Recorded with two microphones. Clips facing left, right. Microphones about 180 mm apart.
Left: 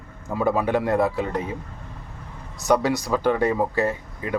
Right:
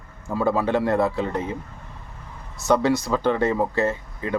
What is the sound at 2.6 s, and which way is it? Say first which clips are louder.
Speech: right 1 dB; 15° left (ahead or behind).